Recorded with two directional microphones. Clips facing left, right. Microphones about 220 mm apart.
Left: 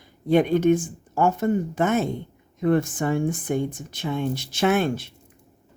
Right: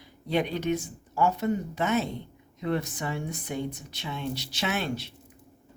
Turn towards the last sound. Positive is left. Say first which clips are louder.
# left 9 dB
turn(degrees=50)  # may be behind; listen again after turning